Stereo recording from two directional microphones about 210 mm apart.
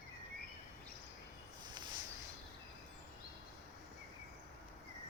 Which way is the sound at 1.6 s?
20° right (ahead or behind).